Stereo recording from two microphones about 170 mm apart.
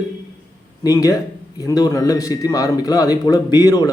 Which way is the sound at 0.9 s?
20° left (ahead or behind).